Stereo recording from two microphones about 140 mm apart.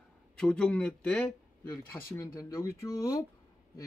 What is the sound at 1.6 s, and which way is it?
Speech, 20° left (ahead or behind).